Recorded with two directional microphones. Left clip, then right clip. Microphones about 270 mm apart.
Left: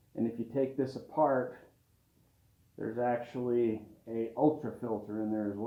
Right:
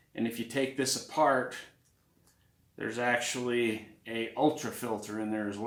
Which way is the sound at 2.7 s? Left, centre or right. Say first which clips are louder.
Right 3 dB; right.